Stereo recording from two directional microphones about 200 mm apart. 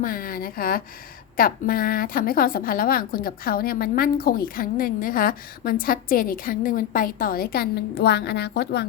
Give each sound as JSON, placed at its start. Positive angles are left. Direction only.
{"t": 0.0, "sound": "a woman's voice", "side_deg": 45}